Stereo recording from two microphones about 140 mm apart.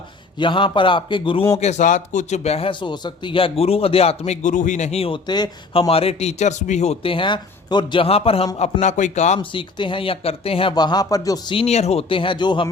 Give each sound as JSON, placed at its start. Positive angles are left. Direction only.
{"t": 0.3, "sound": "speech", "side_deg": 35}
{"t": 1.5, "sound": "speech", "side_deg": 55}
{"t": 5.9, "sound": "speech", "side_deg": 45}
{"t": 8.8, "sound": "a man's voice", "side_deg": 55}
{"t": 9.4, "sound": "speech", "side_deg": 35}
{"t": 11.5, "sound": "speech", "side_deg": 50}